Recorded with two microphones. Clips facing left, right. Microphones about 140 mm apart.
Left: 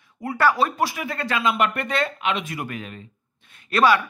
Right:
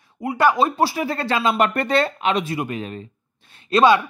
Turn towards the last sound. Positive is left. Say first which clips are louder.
# right 3 dB
turn(degrees=-20)  # may be behind; listen again after turning